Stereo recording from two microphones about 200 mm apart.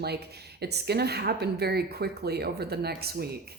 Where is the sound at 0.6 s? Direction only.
55° right (ahead or behind).